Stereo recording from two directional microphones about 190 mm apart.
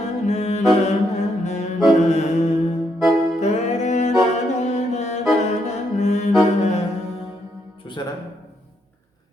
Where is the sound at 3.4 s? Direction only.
35° left (ahead or behind).